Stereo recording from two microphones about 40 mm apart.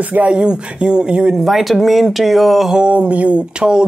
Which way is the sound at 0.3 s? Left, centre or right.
Right.